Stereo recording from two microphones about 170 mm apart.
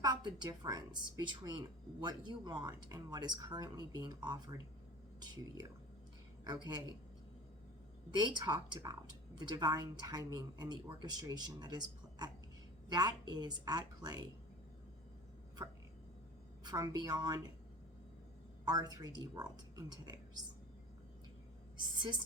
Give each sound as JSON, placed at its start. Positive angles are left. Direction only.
{"t": 0.0, "sound": "speech", "side_deg": -25}
{"t": 8.1, "sound": "speech", "side_deg": -25}
{"t": 16.6, "sound": "speech", "side_deg": -25}
{"t": 18.6, "sound": "speech", "side_deg": -25}
{"t": 21.8, "sound": "a woman's voice", "side_deg": -25}